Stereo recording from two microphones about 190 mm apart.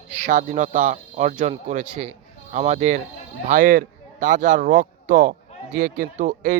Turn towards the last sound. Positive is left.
turn(degrees=-40)  # may be behind; listen again after turning